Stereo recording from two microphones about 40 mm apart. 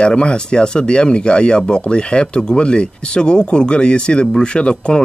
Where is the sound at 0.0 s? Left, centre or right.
Left.